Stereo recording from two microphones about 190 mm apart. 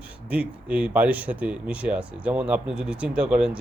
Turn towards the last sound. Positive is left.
turn(degrees=-5)  # may be behind; listen again after turning